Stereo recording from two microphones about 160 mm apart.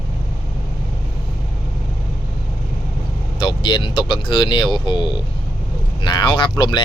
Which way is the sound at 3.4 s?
30° left (ahead or behind).